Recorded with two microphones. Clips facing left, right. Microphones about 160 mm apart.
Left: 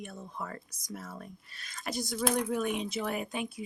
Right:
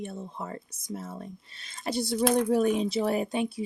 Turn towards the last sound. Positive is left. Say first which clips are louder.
# right 7 dB
turn(degrees=-30)  # may be behind; listen again after turning